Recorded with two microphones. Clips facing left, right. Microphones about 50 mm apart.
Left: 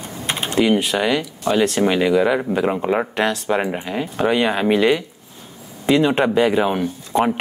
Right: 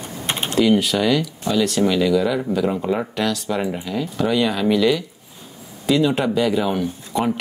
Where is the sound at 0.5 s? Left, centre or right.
Left.